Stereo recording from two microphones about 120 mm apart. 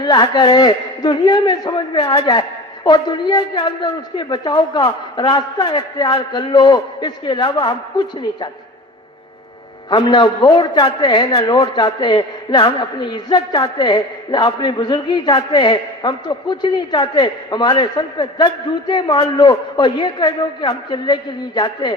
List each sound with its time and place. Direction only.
0.0 s a man's voice: 35° left (ahead or behind)
9.9 s a man's voice: 40° left (ahead or behind)